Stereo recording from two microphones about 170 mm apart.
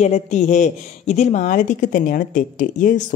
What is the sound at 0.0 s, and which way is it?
A woman's voice, 45° left (ahead or behind).